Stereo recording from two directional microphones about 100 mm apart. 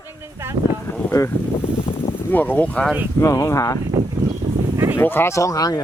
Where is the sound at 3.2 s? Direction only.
30° left (ahead or behind).